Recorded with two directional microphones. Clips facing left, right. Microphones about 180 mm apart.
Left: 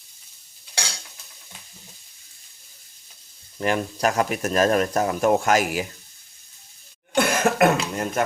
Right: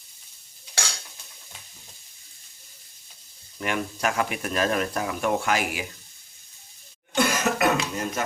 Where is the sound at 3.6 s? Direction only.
35° left (ahead or behind).